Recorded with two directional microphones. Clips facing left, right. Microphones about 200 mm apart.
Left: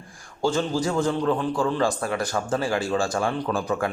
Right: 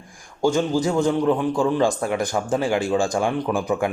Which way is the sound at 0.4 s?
15° right (ahead or behind).